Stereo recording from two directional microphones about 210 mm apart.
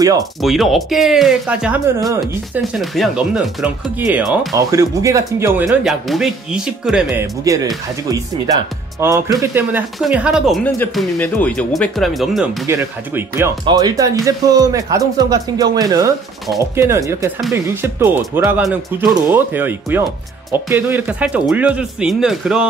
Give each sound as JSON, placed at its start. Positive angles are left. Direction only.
{"t": 0.4, "sound": "speech", "side_deg": 0}
{"t": 4.6, "sound": "speech", "side_deg": -15}
{"t": 5.7, "sound": "speech", "side_deg": 0}
{"t": 7.4, "sound": "speech", "side_deg": -15}
{"t": 12.6, "sound": "speech", "side_deg": -10}